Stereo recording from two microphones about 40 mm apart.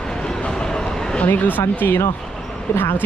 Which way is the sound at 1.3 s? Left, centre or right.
Left.